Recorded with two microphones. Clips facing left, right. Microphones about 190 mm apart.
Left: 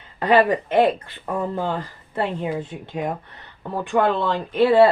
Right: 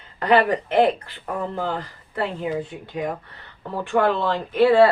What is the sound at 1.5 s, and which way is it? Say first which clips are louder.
Speech: left 1 dB; 25° left (ahead or behind).